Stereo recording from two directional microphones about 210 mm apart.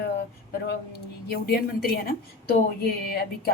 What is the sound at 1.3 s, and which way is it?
A woman's voice, 45° left (ahead or behind).